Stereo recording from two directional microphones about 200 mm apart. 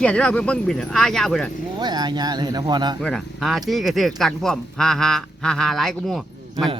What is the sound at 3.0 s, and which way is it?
Speech, 5° left (ahead or behind).